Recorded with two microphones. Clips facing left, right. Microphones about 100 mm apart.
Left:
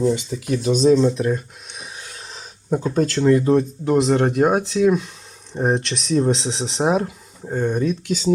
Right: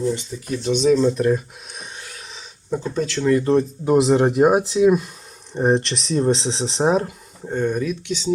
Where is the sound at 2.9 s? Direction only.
45° left (ahead or behind).